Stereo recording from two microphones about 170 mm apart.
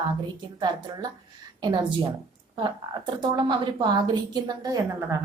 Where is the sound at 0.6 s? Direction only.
25° right (ahead or behind).